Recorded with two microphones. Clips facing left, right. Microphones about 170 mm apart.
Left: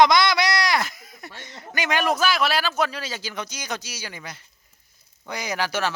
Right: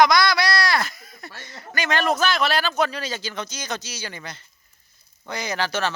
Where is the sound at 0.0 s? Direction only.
20° left (ahead or behind).